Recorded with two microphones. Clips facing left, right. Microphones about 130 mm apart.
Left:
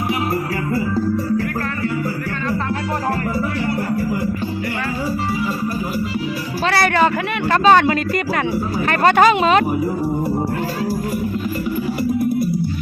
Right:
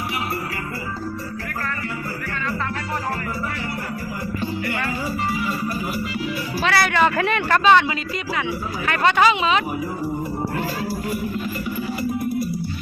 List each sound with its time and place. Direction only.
6.7 s music: 40° left (ahead or behind)
7.6 s speech: 45° left (ahead or behind)